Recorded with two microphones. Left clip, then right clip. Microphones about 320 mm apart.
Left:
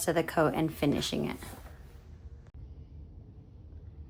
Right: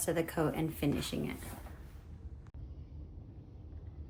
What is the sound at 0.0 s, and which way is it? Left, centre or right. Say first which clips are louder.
Speech: left 6 dB; centre.